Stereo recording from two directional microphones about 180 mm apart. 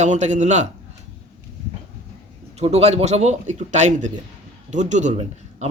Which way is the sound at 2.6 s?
35° right (ahead or behind).